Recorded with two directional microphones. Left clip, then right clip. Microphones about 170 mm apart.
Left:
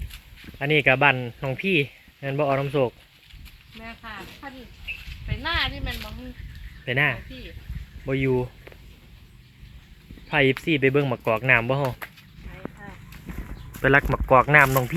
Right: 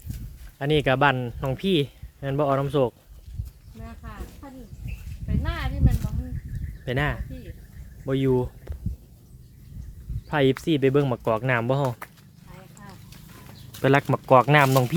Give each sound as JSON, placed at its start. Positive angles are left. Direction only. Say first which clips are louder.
{"t": 0.6, "sound": "speech", "louder": "left 2 dB", "side_deg": -15}
{"t": 4.4, "sound": "speech", "louder": "left 8 dB", "side_deg": 0}
{"t": 10.2, "sound": "speech", "louder": "left 1 dB", "side_deg": -15}
{"t": 13.8, "sound": "speech", "louder": "left 1 dB", "side_deg": -25}